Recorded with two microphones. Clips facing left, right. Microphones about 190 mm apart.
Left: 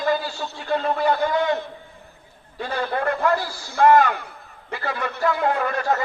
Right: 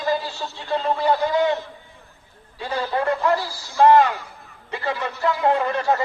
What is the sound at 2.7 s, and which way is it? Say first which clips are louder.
A man's voice: right 1 dB; 55° left (ahead or behind).